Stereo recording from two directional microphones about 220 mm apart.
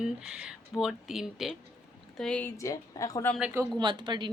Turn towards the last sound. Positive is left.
turn(degrees=-20)  # may be behind; listen again after turning